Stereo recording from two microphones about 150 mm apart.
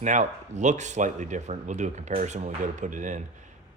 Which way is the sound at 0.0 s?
55° right (ahead or behind).